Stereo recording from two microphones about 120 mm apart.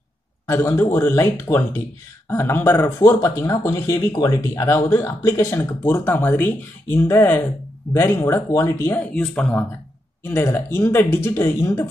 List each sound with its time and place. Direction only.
0.5 s speech: 20° left (ahead or behind)
10.2 s speech: 20° left (ahead or behind)